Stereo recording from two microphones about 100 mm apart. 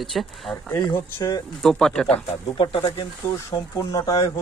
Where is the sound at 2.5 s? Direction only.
60° left (ahead or behind).